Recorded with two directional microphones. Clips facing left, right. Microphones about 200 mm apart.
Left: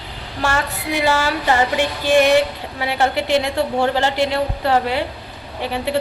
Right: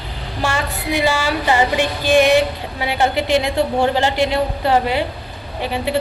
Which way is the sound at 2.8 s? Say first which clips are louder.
Right 1 dB; 15° right (ahead or behind).